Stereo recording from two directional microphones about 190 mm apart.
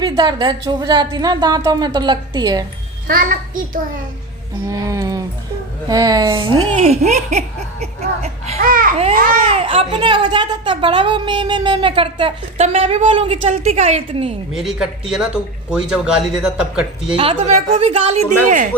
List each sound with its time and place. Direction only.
0.0 s a woman's voice: 20° right (ahead or behind)
3.1 s a child's voice: 45° right (ahead or behind)
4.7 s a sound: 15° right (ahead or behind)
5.9 s a woman's voice: 20° right (ahead or behind); by 8.5 s 35° right (ahead or behind)
8.6 s a child's voice: 50° right (ahead or behind)
9.6 s a woman's voice: 30° right (ahead or behind)
14.5 s speech: centre (ahead or behind)
17.2 s a woman's voice: 30° right (ahead or behind)